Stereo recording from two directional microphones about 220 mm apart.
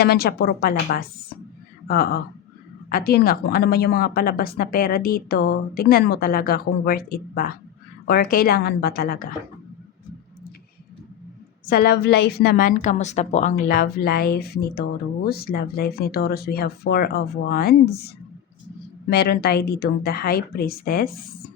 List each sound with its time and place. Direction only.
0.0 s speech: 45° left (ahead or behind)
11.7 s speech: 45° left (ahead or behind)
19.1 s speech: 45° left (ahead or behind)